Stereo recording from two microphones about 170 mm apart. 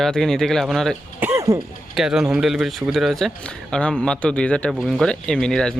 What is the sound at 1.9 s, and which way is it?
Speech, 5° right (ahead or behind).